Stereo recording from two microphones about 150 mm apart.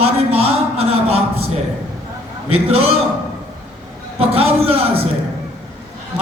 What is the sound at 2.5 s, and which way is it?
Speech, 40° right (ahead or behind).